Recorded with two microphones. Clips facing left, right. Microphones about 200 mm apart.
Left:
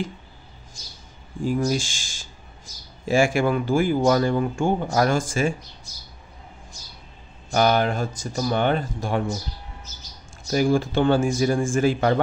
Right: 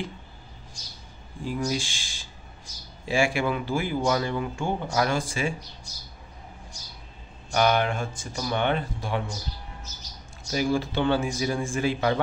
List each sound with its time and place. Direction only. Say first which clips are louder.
1.4 s speech: left 5 dB; 45° left (ahead or behind)
7.5 s speech: left 3 dB; 40° left (ahead or behind)
10.5 s speech: left 5 dB; 50° left (ahead or behind)